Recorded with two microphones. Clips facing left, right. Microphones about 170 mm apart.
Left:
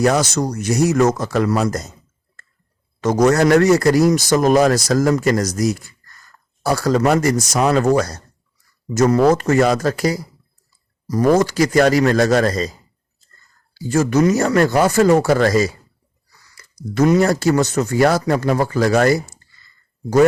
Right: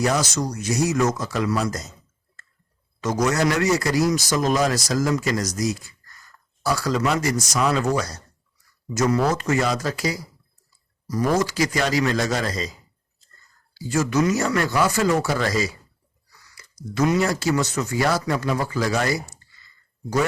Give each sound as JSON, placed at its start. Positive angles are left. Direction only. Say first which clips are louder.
{"t": 0.0, "sound": "speech", "louder": "left 6 dB", "side_deg": 55}
{"t": 3.0, "sound": "speech", "louder": "left 7 dB", "side_deg": 55}
{"t": 13.7, "sound": "speech", "louder": "left 5 dB", "side_deg": 50}
{"t": 16.9, "sound": "speech", "louder": "left 6 dB", "side_deg": 45}